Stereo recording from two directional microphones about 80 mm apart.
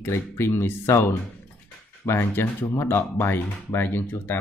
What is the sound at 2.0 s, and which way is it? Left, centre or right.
Speech, left.